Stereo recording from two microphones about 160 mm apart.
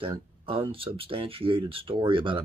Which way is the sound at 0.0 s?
35° right (ahead or behind).